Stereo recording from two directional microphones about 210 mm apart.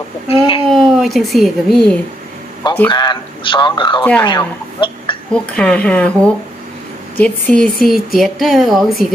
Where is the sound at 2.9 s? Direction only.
20° left (ahead or behind).